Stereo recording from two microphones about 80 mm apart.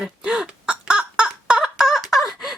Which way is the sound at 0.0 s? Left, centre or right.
Centre.